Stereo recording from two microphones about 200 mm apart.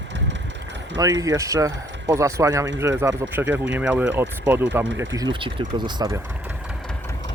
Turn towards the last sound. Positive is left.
turn(degrees=-20)  # may be behind; listen again after turning